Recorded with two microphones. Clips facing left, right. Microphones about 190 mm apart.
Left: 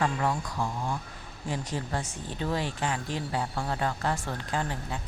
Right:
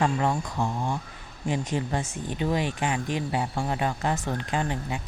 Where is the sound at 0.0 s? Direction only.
25° right (ahead or behind).